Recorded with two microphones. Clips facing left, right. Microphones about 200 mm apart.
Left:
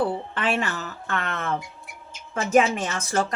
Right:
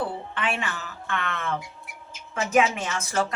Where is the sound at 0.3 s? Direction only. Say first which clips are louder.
Left 2 dB; 40° left (ahead or behind).